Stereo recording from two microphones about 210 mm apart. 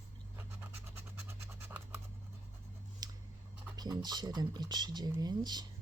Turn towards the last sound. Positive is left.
turn(degrees=-20)  # may be behind; listen again after turning